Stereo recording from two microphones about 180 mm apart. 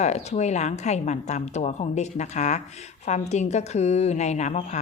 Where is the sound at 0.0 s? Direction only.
40° left (ahead or behind).